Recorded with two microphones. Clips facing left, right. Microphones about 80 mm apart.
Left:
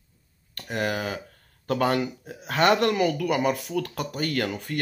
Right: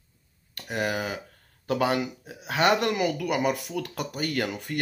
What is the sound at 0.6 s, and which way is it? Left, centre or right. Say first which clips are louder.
Speech: left 1 dB; centre.